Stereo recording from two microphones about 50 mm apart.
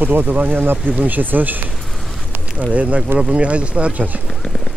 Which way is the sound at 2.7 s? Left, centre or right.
Right.